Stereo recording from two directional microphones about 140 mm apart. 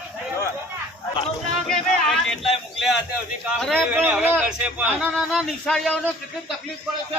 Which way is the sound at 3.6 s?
Centre (ahead or behind).